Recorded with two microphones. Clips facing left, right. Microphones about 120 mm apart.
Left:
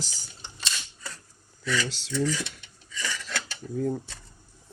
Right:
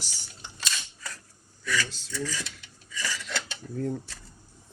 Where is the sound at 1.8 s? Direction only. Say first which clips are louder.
Left 7 dB; 90° left.